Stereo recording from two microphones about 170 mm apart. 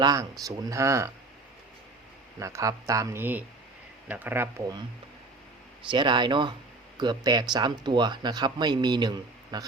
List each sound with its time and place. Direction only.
0.0 s speech: 20° right (ahead or behind)
2.4 s speech: 20° right (ahead or behind)
5.9 s speech: 25° right (ahead or behind)